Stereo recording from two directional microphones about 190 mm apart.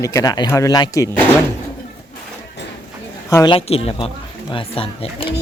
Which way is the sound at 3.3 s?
20° left (ahead or behind).